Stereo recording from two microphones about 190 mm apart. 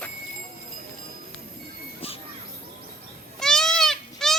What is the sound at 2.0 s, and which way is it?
Bird, 30° left (ahead or behind).